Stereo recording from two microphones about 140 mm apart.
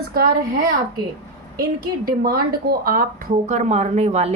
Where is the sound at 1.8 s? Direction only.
90° right.